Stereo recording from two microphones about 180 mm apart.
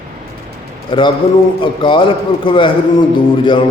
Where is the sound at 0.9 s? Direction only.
25° left (ahead or behind).